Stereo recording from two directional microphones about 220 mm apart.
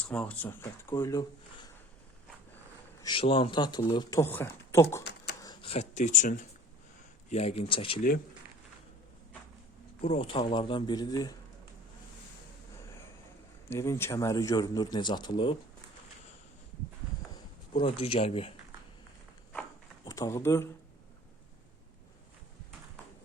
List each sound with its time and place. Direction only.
0.0 s speech: 5° left (ahead or behind)
3.0 s speech: 25° left (ahead or behind)
10.0 s speech: 25° left (ahead or behind)
13.7 s speech: 10° left (ahead or behind)
17.7 s speech: 25° left (ahead or behind)
20.1 s speech: 15° left (ahead or behind)